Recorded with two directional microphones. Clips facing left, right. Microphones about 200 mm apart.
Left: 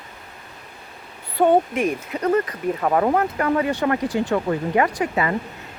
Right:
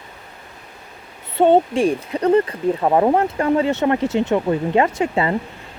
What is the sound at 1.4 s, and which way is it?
Speech, 25° right (ahead or behind).